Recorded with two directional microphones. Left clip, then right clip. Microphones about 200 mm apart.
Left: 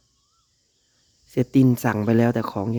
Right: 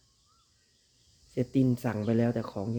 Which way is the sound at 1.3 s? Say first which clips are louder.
Left 9 dB; 50° left (ahead or behind).